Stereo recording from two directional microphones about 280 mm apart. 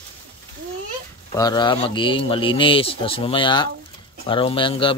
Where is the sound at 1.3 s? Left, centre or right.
Centre.